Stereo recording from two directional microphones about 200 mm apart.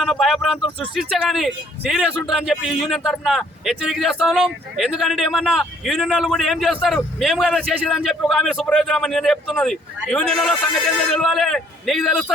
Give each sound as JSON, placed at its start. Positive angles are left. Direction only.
{"t": 0.0, "sound": "speech", "side_deg": 0}